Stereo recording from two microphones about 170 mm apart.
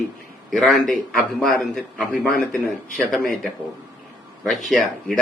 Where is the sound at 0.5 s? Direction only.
Centre (ahead or behind).